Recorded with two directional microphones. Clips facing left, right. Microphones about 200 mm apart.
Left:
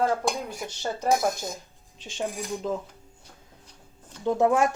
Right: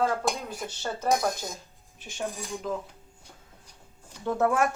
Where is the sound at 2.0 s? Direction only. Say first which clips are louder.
Left 3 dB; 20° left (ahead or behind).